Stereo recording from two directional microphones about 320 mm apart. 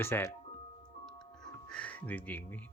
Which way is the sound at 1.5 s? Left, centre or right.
Centre.